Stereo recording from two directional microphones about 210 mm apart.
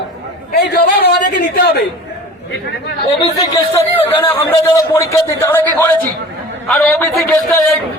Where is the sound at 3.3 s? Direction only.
15° left (ahead or behind).